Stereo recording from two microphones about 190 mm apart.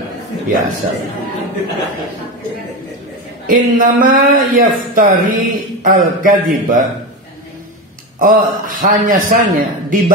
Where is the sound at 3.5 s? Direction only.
45° right (ahead or behind).